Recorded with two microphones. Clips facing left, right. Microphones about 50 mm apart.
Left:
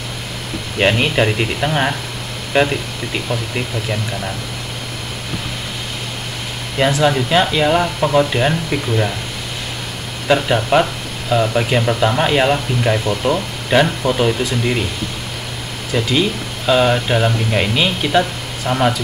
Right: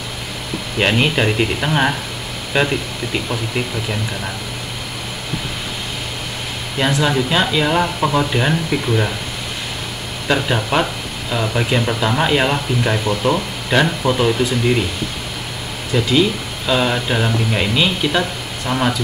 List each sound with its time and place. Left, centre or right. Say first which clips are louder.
0.8 s speech: left 1 dB; centre
6.8 s speech: left 3 dB; centre
7.2 s speech: left 2 dB; centre
7.4 s speech: left 1 dB; centre
10.2 s speech: left 3 dB; centre
15.9 s speech: right 1 dB; centre
18.7 s speech: left 2 dB; centre